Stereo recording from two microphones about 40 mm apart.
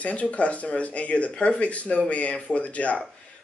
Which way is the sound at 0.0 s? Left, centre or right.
Left.